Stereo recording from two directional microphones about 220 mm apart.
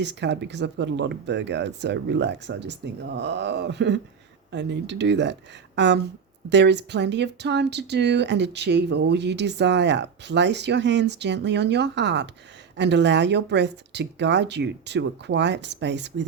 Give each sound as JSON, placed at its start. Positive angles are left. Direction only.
{"t": 0.0, "sound": "speech", "side_deg": -50}